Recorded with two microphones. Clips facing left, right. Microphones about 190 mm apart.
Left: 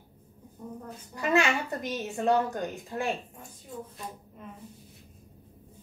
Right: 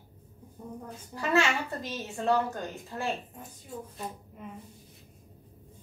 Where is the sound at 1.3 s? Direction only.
15° left (ahead or behind).